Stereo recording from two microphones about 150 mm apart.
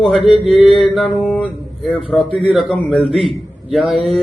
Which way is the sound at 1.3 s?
10° left (ahead or behind).